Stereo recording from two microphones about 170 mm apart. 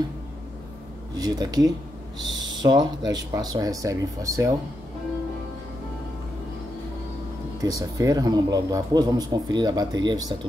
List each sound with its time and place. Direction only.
1.1 s a man's voice: 25° right (ahead or behind)
7.6 s a man's voice: 20° right (ahead or behind)